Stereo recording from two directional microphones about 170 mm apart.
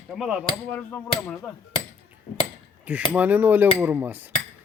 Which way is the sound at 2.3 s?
40° left (ahead or behind).